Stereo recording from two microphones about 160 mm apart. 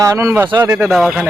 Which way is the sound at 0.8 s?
Centre (ahead or behind).